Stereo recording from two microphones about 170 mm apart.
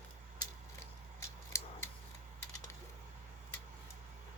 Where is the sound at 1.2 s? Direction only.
15° left (ahead or behind).